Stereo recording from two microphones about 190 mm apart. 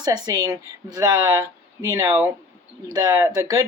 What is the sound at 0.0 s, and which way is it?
Speech, 20° right (ahead or behind).